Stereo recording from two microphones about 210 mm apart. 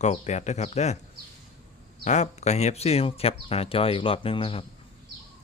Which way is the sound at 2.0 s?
35° left (ahead or behind).